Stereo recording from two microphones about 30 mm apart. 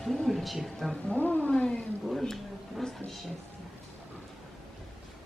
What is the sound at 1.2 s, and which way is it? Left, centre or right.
Speech, left.